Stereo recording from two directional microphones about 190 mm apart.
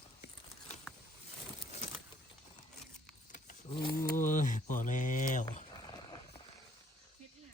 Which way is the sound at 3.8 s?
55° left (ahead or behind).